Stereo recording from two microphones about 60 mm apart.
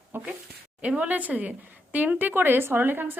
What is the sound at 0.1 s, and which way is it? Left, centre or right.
Speech, right.